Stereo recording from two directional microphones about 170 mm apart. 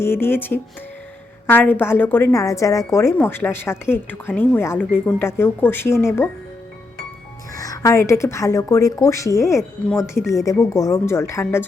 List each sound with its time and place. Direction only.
0.0 s speech: 15° left (ahead or behind)
7.5 s speech: 20° left (ahead or behind)
9.9 s speech: 5° right (ahead or behind)
10.2 s speech: 20° left (ahead or behind)